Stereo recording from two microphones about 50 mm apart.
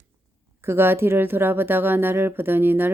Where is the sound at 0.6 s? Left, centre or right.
Right.